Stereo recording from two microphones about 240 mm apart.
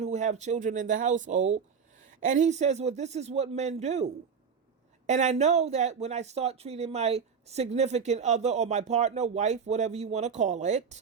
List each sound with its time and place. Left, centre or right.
0.0 s speech: right